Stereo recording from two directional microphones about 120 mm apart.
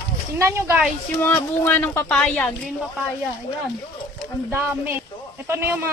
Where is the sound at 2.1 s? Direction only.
5° left (ahead or behind).